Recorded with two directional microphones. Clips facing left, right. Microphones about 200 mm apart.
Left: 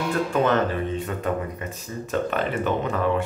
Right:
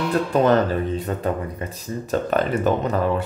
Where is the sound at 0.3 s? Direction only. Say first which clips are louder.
Right 5 dB; 35° right (ahead or behind).